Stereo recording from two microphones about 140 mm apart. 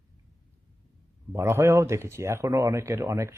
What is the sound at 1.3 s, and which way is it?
Speech, 20° right (ahead or behind).